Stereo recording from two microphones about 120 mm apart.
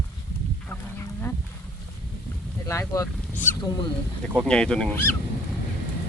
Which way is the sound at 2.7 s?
25° left (ahead or behind).